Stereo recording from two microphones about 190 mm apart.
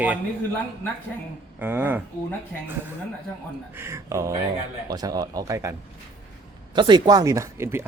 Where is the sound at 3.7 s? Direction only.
15° right (ahead or behind).